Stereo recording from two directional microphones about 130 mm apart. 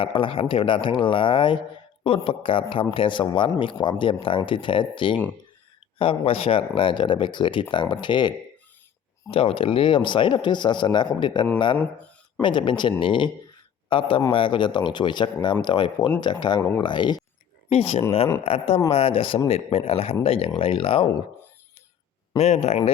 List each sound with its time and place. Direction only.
0.0 s a man's voice: 40° left (ahead or behind)
9.3 s a man's voice: 45° left (ahead or behind)
16.6 s speech: 15° left (ahead or behind)
16.8 s a man's voice: 35° left (ahead or behind)
17.7 s speech: 50° left (ahead or behind)
22.4 s speech: 55° left (ahead or behind)